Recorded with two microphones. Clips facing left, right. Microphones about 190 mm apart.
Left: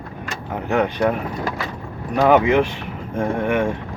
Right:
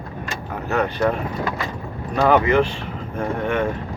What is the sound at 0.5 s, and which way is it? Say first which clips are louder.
Speech: left 3 dB; 15° left (ahead or behind).